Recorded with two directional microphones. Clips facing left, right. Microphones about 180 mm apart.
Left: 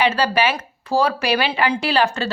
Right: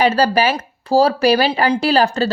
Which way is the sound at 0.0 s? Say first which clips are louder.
Right 4 dB; 40° right (ahead or behind).